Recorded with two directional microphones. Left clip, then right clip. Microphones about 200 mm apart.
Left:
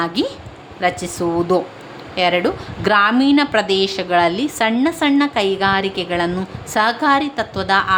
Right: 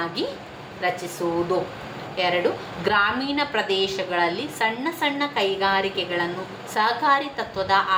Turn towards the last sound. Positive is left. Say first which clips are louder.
# left 5 dB
turn(degrees=55)  # may be behind; listen again after turning